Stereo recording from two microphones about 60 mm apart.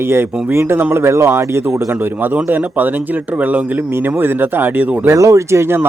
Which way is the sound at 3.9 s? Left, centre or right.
Right.